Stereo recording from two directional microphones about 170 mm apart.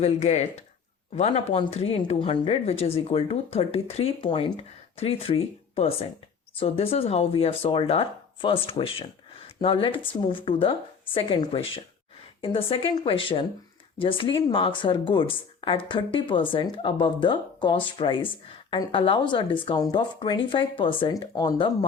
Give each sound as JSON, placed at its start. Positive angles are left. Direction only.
{"t": 0.0, "sound": "speech", "side_deg": 40}